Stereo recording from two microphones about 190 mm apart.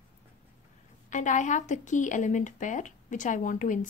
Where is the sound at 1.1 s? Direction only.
40° left (ahead or behind).